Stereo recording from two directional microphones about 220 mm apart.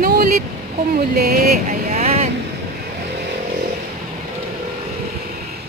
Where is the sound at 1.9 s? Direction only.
30° right (ahead or behind).